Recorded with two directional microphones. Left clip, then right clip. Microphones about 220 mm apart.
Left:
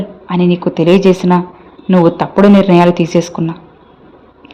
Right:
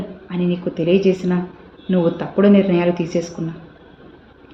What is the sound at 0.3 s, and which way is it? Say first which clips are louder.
A man's voice: left 9 dB; 50° left (ahead or behind).